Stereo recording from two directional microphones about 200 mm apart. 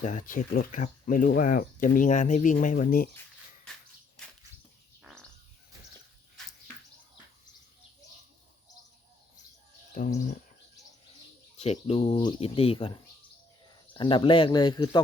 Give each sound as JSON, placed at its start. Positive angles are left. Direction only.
{"t": 0.0, "sound": "speech", "side_deg": 40}
{"t": 9.9, "sound": "speech", "side_deg": 40}
{"t": 11.6, "sound": "speech", "side_deg": 30}